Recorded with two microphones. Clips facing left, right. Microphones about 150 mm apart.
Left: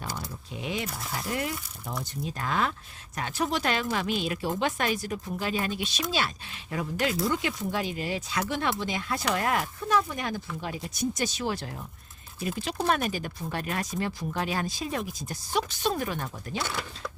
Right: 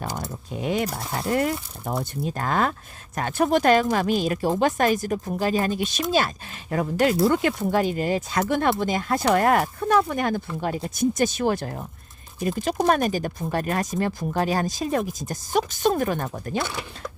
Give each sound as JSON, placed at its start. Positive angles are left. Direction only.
{"t": 0.2, "sound": "keys jangling", "side_deg": -50}
{"t": 1.1, "sound": "speech", "side_deg": -55}
{"t": 16.6, "sound": "speech", "side_deg": -15}